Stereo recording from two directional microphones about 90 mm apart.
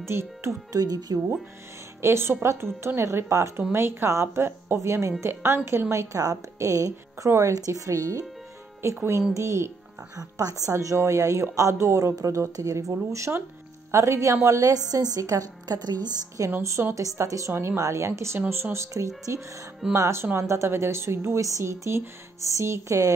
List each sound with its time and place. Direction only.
0.1 s a woman's voice: 30° right (ahead or behind)
0.7 s speech: 45° right (ahead or behind)
2.0 s a woman's voice: 30° right (ahead or behind); by 16.4 s 50° right (ahead or behind)
16.4 s speech: 30° right (ahead or behind)